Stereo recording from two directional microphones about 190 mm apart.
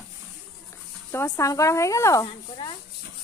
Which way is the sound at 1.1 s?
15° left (ahead or behind).